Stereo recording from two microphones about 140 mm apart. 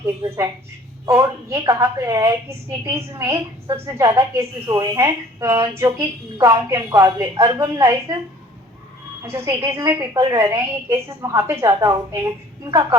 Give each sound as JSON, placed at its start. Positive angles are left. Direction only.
{"t": 0.2, "sound": "a woman's voice", "side_deg": -25}
{"t": 9.2, "sound": "a woman's voice", "side_deg": -20}